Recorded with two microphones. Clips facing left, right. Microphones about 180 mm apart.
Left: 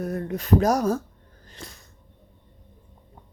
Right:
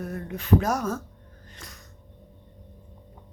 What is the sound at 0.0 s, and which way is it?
Speech, 40° left (ahead or behind).